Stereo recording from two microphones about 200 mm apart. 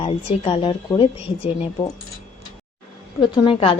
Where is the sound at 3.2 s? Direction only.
25° left (ahead or behind).